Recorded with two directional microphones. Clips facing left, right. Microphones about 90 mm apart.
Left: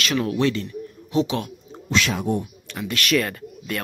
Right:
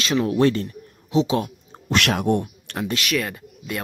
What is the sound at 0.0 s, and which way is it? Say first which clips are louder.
Speech: right 3 dB; 25° right (ahead or behind).